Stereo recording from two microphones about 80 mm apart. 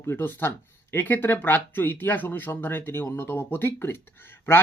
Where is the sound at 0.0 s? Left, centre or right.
Left.